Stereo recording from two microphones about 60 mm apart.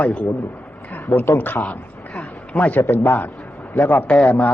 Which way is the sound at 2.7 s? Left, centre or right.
Left.